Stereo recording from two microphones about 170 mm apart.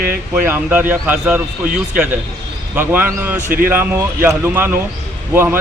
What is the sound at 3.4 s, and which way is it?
Speech, 55° right (ahead or behind).